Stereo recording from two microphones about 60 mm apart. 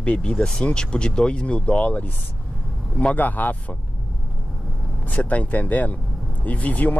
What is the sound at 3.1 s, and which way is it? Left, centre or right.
Speech, left.